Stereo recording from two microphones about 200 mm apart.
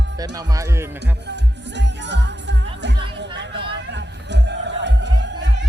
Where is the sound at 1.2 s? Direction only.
60° right (ahead or behind).